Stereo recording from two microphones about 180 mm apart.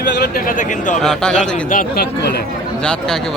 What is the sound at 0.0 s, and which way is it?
Speech, 65° left (ahead or behind).